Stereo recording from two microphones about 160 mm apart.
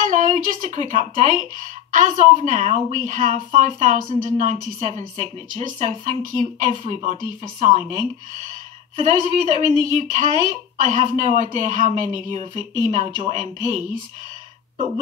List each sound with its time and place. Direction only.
0.0 s a sound: 55° right (ahead or behind)
0.9 s a woman's voice: 55° right (ahead or behind)
9.0 s a woman's voice: 50° right (ahead or behind)